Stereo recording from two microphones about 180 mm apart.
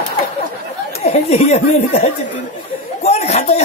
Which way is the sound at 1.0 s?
35° left (ahead or behind).